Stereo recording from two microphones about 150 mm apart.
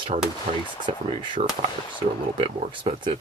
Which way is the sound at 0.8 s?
30° right (ahead or behind).